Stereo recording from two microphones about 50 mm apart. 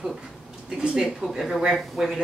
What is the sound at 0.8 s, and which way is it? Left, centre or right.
Speech, centre.